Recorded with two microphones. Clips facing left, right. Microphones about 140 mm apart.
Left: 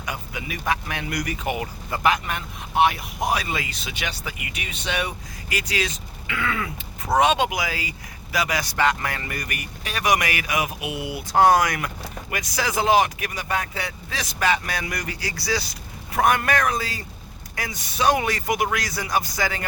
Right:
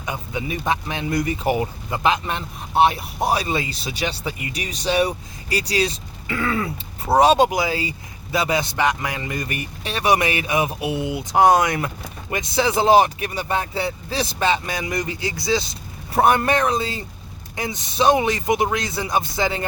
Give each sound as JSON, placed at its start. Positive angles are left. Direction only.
{"t": 0.0, "sound": "speech", "side_deg": -25}